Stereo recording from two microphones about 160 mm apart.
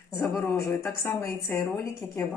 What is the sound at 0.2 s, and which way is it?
Speech, 15° left (ahead or behind).